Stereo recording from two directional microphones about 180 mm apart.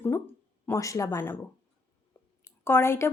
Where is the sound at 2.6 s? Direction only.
15° left (ahead or behind).